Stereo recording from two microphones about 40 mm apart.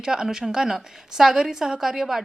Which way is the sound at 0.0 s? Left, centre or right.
Centre.